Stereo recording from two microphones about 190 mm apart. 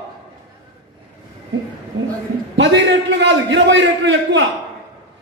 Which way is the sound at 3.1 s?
70° right (ahead or behind).